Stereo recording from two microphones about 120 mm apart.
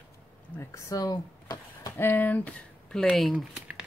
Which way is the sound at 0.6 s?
25° left (ahead or behind).